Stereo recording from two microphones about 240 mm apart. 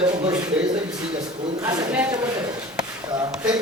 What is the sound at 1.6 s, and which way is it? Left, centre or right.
Speech, centre.